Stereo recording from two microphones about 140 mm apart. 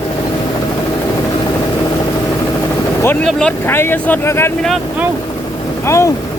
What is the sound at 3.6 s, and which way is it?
Speech, 15° left (ahead or behind).